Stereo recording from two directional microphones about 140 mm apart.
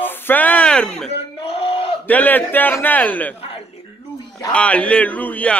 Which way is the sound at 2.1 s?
10° left (ahead or behind).